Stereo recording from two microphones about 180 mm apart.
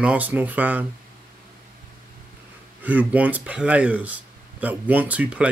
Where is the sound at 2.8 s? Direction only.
10° right (ahead or behind).